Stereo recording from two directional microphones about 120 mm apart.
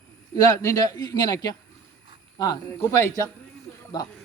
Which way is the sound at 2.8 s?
20° left (ahead or behind).